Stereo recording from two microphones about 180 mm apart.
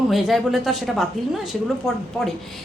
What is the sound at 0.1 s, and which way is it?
A woman's voice, centre (ahead or behind).